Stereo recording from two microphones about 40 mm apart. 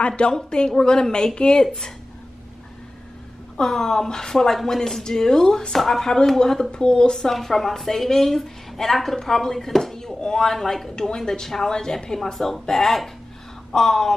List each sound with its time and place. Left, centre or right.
0.0 s speech: left
3.5 s speech: centre